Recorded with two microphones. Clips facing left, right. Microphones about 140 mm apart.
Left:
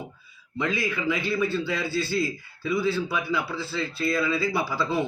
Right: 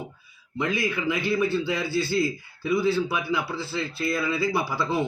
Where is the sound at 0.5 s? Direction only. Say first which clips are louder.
Right 1 dB; 15° right (ahead or behind).